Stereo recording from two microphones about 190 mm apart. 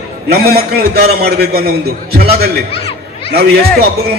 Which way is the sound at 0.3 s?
55° right (ahead or behind).